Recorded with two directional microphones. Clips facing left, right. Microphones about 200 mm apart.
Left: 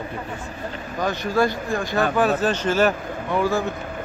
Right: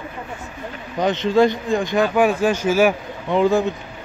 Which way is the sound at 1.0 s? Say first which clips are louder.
Right 5 dB; 20° right (ahead or behind).